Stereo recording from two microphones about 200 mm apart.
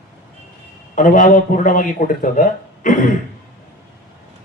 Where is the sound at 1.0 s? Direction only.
40° left (ahead or behind).